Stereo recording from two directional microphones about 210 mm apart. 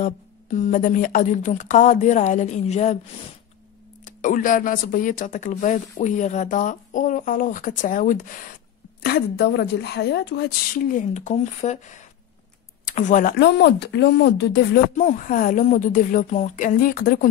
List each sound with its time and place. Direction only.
0.0 s speech: 35° left (ahead or behind)
4.0 s a woman's voice: 35° left (ahead or behind)
15.0 s speech: 35° left (ahead or behind)